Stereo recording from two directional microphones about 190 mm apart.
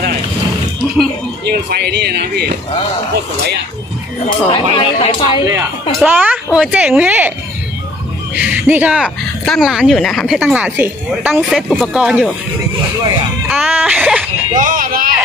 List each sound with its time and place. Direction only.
1.5 s speech: 60° right (ahead or behind)
4.5 s speech: 25° left (ahead or behind)
5.9 s a woman's voice: 10° right (ahead or behind)
8.4 s speech: 10° right (ahead or behind)
13.5 s speech: 5° right (ahead or behind)
14.5 s a sound: 45° right (ahead or behind)